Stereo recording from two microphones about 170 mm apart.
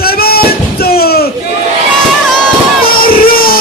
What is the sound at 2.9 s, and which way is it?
Music, 60° left (ahead or behind).